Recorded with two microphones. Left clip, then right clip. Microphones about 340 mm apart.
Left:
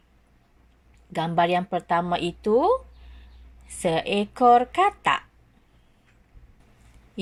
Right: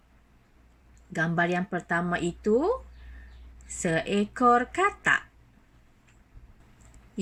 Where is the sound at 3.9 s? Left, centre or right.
Centre.